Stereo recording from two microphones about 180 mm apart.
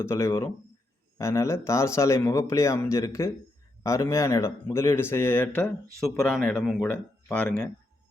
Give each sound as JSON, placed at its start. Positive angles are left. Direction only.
{"t": 0.0, "sound": "a man's voice", "side_deg": 15}